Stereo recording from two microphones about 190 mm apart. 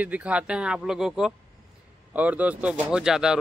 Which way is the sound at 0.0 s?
5° right (ahead or behind).